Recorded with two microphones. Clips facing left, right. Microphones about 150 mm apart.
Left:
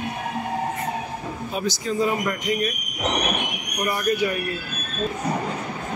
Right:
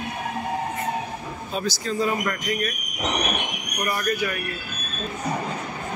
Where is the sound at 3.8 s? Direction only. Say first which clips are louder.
Left 3 dB; 20° left (ahead or behind).